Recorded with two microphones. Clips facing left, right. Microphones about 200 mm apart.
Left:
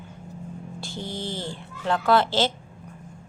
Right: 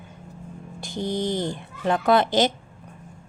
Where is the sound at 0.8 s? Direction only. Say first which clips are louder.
Right 8 dB; 15° right (ahead or behind).